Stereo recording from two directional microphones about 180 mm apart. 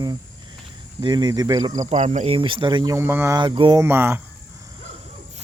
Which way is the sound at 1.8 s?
40° right (ahead or behind).